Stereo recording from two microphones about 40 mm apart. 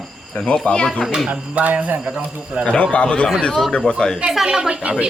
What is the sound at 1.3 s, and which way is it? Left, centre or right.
Speech, right.